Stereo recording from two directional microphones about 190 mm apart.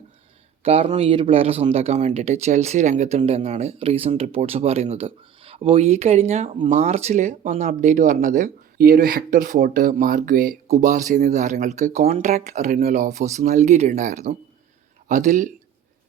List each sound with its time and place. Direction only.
0.6 s speech: 30° right (ahead or behind)